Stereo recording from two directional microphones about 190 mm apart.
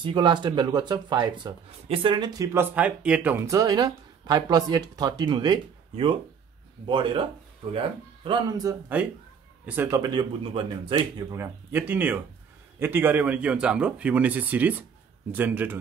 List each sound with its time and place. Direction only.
0.0 s speech: 25° right (ahead or behind)